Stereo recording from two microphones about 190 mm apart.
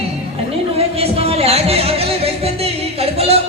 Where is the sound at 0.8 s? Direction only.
30° right (ahead or behind).